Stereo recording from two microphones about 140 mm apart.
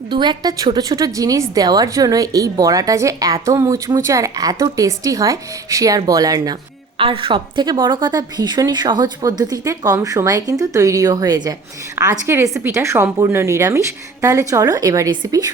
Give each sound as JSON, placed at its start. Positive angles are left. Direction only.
{"t": 0.1, "sound": "a woman's voice", "side_deg": -30}
{"t": 7.0, "sound": "a woman's voice", "side_deg": -40}